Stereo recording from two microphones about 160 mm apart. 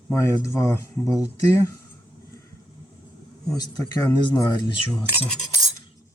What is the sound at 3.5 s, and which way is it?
Speech, 25° left (ahead or behind).